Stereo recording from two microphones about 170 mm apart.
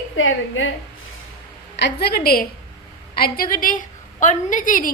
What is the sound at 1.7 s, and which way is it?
A woman's voice, 80° left.